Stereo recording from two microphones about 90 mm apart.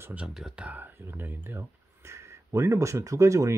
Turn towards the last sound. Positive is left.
turn(degrees=-35)  # may be behind; listen again after turning